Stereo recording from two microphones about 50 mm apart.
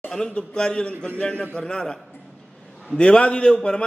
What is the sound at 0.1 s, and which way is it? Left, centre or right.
A man's voice, centre.